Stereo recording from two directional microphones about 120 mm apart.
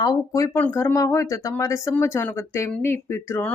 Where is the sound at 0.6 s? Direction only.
15° left (ahead or behind).